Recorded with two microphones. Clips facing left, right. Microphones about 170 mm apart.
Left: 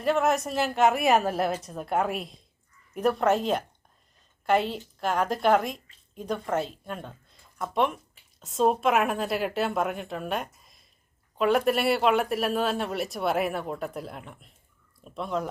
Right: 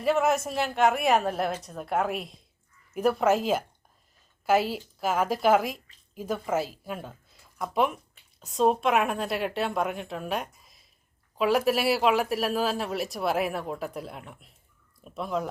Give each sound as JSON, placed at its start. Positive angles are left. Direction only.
{"t": 0.0, "sound": "a woman's voice", "side_deg": 0}